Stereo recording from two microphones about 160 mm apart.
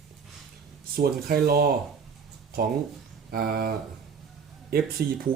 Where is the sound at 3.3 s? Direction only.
70° right (ahead or behind).